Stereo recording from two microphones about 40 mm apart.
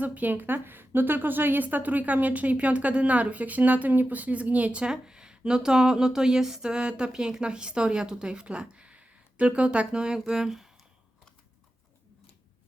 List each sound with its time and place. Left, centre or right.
0.0 s a woman's voice: right
4.9 s a sound: centre
5.5 s speech: centre